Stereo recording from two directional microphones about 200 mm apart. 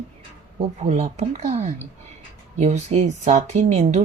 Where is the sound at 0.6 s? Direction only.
30° right (ahead or behind).